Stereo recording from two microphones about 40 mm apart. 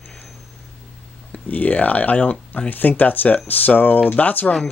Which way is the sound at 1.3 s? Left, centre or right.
Left.